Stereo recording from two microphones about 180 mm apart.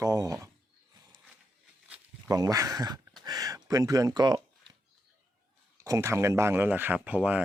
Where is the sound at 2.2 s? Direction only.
20° right (ahead or behind).